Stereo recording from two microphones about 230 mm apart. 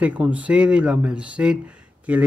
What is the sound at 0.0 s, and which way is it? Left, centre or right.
Speech, centre.